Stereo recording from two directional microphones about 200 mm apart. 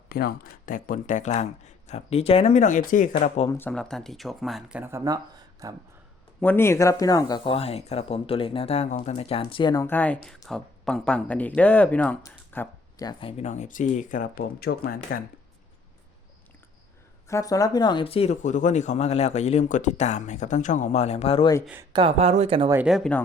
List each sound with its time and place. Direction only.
0.1 s speech: 50° left (ahead or behind)
3.5 s speech: 10° left (ahead or behind)
4.8 s speech: 15° right (ahead or behind)
6.4 s speech: 10° left (ahead or behind)
9.8 s speech: 10° left (ahead or behind)
12.2 s a sound: 15° left (ahead or behind)
13.1 s speech: 25° left (ahead or behind); by 15.2 s 45° left (ahead or behind)
17.2 s speech: 15° left (ahead or behind)
21.9 s speech: 30° right (ahead or behind)
22.7 s speech: 5° right (ahead or behind)